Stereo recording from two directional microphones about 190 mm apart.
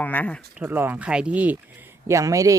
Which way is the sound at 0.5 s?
10° right (ahead or behind).